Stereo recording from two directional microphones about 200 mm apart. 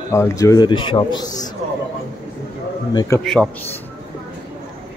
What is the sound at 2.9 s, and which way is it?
Speech, 15° left (ahead or behind).